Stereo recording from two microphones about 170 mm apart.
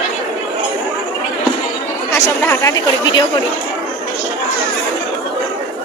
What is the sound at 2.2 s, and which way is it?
Speech, 15° left (ahead or behind).